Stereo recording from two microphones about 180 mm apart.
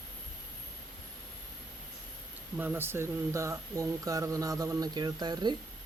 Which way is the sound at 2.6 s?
10° right (ahead or behind).